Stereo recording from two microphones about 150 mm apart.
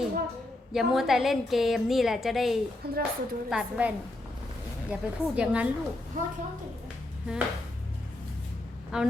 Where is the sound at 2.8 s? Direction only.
90° right.